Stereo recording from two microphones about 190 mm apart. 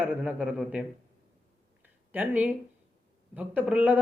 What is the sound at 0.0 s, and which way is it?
Speech, 10° right (ahead or behind).